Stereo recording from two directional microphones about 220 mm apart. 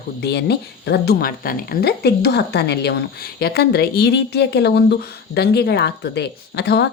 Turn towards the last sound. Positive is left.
turn(degrees=50)  # may be behind; listen again after turning